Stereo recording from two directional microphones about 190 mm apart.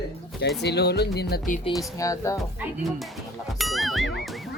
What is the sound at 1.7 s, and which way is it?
Music, 15° left (ahead or behind).